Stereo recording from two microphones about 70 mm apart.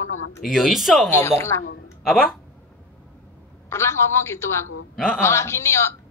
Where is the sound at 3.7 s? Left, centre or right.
Left.